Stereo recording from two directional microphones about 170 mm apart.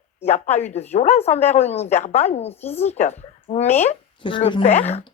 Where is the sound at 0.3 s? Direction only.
40° left (ahead or behind).